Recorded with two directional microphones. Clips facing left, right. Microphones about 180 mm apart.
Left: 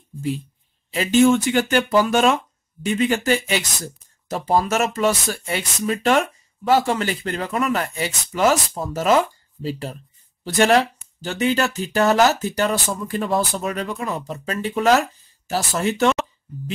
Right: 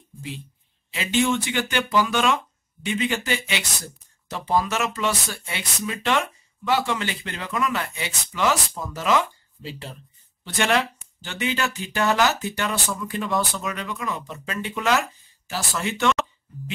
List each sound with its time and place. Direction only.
0.9 s speech: 45° left (ahead or behind)